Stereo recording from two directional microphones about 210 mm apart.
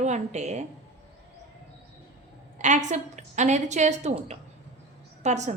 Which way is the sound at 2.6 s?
35° right (ahead or behind).